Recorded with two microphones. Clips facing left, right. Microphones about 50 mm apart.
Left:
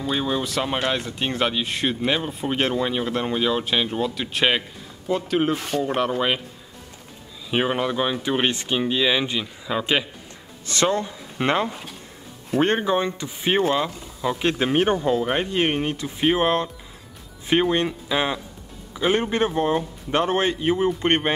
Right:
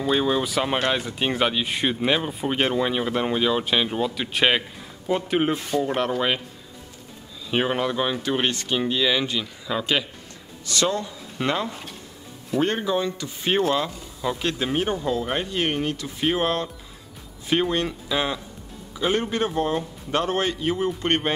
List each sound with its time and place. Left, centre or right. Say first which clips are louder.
0.0 s speech: right 2 dB; centre
5.1 s speech: even; centre
5.7 s speech: right 3 dB; left
7.5 s speech: left 1 dB; centre
8.2 s speech: left 1 dB; centre
10.7 s speech: left 2 dB; left
13.4 s speech: left 1 dB; centre
14.4 s speech: left 6 dB; left